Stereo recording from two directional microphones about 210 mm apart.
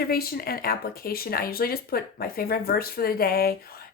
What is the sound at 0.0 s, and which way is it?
Speech, 45° left (ahead or behind).